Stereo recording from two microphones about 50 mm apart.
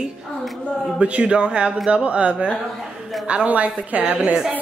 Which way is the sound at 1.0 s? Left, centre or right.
Right.